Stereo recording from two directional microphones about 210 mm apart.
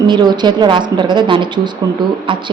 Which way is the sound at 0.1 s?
20° right (ahead or behind).